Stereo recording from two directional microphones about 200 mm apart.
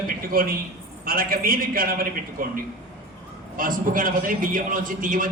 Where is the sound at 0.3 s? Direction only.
45° right (ahead or behind).